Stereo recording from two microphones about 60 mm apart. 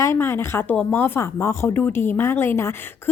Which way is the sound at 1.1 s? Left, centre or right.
Left.